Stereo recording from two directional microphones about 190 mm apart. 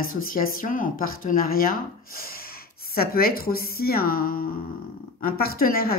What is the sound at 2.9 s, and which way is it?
A woman's voice, 50° left (ahead or behind).